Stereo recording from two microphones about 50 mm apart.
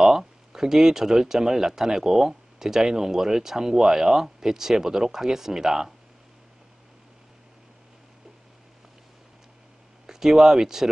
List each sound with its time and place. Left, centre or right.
0.0 s speech: centre
10.0 s speech: centre